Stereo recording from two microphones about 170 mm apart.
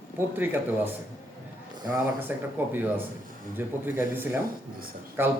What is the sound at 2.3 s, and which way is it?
Speech, 10° right (ahead or behind).